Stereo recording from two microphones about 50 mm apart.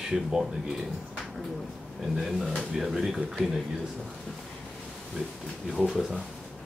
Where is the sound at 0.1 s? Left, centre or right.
Centre.